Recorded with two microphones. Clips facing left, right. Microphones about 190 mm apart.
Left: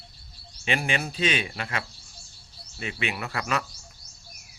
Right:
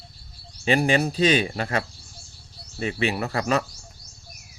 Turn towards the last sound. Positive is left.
turn(degrees=-35)  # may be behind; listen again after turning